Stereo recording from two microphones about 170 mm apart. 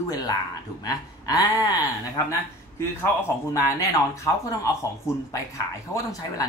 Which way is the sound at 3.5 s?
20° left (ahead or behind).